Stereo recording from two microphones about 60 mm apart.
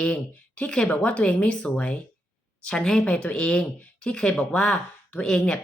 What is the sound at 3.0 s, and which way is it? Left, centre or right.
Speech, left.